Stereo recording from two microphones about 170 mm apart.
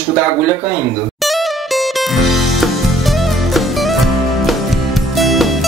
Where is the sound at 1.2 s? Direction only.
Centre (ahead or behind).